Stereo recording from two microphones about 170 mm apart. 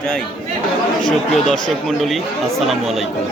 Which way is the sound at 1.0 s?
5° left (ahead or behind).